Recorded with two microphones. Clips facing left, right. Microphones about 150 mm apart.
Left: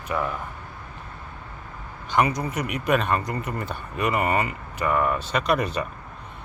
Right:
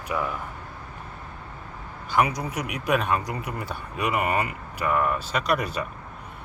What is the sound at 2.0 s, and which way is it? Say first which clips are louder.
Speech: left 1 dB; 5° right (ahead or behind).